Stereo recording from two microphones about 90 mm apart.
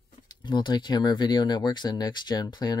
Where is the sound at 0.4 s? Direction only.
55° left (ahead or behind).